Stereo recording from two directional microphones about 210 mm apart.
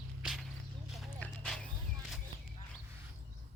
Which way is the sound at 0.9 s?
Centre (ahead or behind).